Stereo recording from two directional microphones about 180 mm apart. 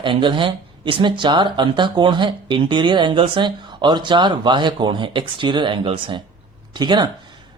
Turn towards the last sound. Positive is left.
turn(degrees=-25)  # may be behind; listen again after turning